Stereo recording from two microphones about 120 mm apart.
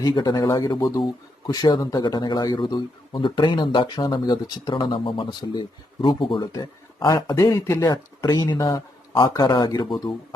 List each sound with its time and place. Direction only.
0.0 s speech: 40° left (ahead or behind)
6.5 s speech: 35° left (ahead or behind)